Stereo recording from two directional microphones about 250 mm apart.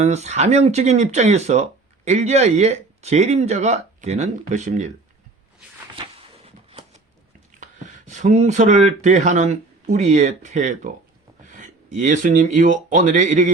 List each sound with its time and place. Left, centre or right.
0.0 s speech: right
6.1 s a sound: right
7.6 s speech: right